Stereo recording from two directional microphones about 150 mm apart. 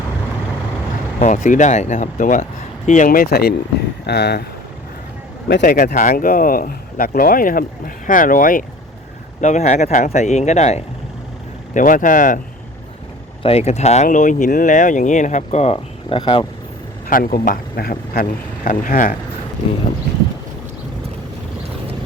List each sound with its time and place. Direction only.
1.2 s speech: 60° left (ahead or behind); by 4.4 s 90° left
5.6 s speech: 90° left; by 8.6 s 65° left (ahead or behind)
9.4 s speech: 50° left (ahead or behind)
11.7 s speech: 60° left (ahead or behind)
13.4 s speech: 45° left (ahead or behind)
17.1 s speech: 70° left (ahead or behind)